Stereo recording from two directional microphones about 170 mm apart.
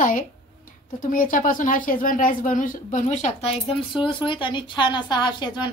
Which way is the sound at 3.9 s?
30° left (ahead or behind).